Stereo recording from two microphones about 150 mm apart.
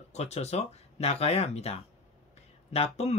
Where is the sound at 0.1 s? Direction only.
45° left (ahead or behind).